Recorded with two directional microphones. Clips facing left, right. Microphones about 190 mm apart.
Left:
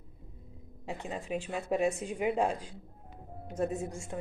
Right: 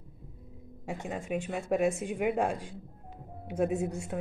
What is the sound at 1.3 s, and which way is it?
A woman's voice, 5° right (ahead or behind).